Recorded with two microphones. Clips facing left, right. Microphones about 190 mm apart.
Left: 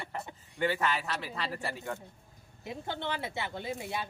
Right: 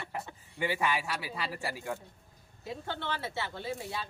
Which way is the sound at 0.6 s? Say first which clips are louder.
Left 1 dB; 10° right (ahead or behind).